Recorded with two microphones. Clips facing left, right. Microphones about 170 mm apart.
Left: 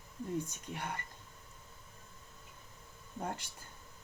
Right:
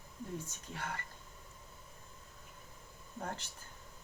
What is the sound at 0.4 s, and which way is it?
Speech, 15° left (ahead or behind).